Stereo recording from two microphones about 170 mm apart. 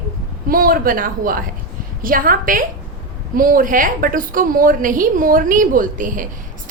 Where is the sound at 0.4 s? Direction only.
55° right (ahead or behind).